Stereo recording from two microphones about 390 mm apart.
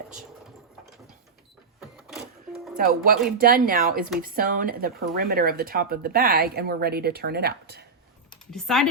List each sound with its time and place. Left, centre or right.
2.0 s printer: centre
2.7 s speech: right
8.4 s speech: centre